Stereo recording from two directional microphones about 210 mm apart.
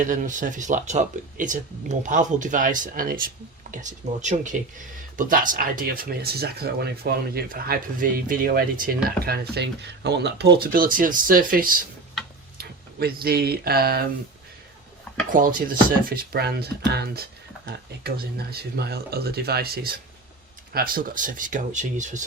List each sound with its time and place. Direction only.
0.0 s speech: 40° right (ahead or behind)
15.3 s speech: 40° right (ahead or behind)